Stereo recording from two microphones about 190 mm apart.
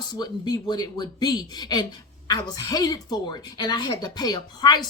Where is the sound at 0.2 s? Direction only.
20° left (ahead or behind).